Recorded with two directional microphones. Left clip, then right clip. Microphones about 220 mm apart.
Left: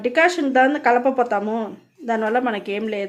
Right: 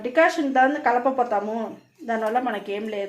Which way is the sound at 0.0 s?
45° left (ahead or behind).